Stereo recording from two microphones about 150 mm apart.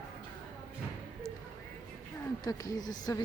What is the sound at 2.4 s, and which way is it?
Speech, 25° left (ahead or behind).